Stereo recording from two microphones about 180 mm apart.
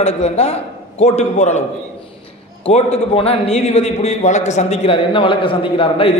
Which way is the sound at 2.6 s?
35° left (ahead or behind).